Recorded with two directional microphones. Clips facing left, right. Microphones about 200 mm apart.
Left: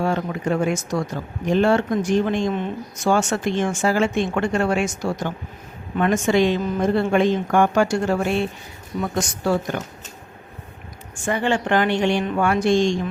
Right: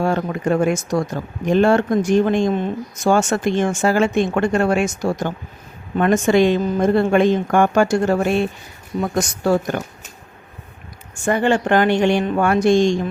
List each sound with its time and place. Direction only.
0.0 s speech: 50° right (ahead or behind)
9.4 s speech: 45° right (ahead or behind)
11.3 s speech: 50° right (ahead or behind)